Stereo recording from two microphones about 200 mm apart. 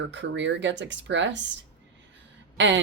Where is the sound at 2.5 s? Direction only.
65° right (ahead or behind).